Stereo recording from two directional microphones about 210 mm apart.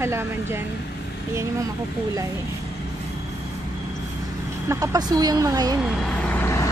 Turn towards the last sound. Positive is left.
turn(degrees=10)  # may be behind; listen again after turning